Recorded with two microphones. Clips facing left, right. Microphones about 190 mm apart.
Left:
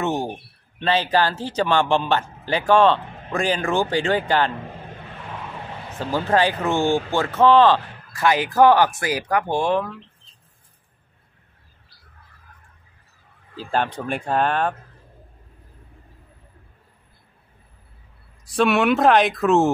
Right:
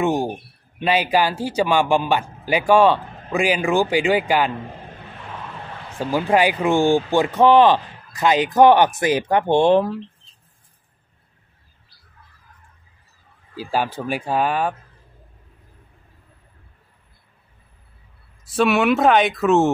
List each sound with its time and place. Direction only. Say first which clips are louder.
0.0 s speech: right 4 dB; 10° right (ahead or behind)
5.9 s speech: right 2 dB; 10° right (ahead or behind); by 10.0 s 30° right (ahead or behind)
13.6 s speech: right 1 dB; 5° right (ahead or behind)
18.4 s speech: right 1 dB; centre (ahead or behind)